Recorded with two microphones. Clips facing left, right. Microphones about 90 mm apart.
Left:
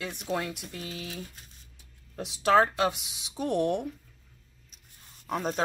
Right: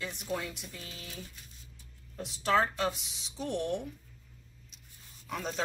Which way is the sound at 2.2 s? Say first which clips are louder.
Left 6 dB; 70° left (ahead or behind).